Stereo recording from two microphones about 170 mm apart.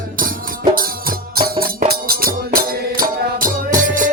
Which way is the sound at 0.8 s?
60° right (ahead or behind).